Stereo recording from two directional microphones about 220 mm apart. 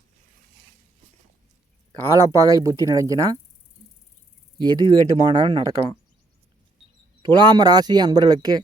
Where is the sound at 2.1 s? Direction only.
15° right (ahead or behind).